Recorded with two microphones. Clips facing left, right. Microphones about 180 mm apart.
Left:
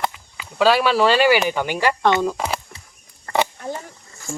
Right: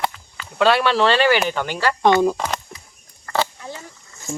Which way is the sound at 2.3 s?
5° left (ahead or behind).